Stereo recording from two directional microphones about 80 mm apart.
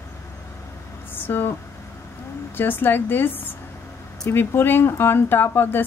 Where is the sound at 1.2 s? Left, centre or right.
Left.